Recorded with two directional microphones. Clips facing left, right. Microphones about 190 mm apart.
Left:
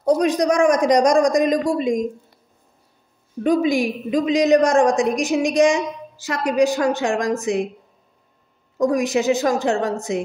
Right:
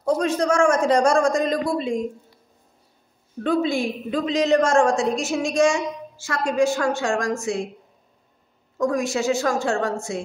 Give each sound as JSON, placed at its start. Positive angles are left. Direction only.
{"t": 0.0, "sound": "a man's voice", "side_deg": 15}
{"t": 3.4, "sound": "a man's voice", "side_deg": 15}
{"t": 8.7, "sound": "a woman's voice", "side_deg": 20}